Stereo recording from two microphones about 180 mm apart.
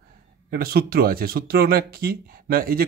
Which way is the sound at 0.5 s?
60° right (ahead or behind).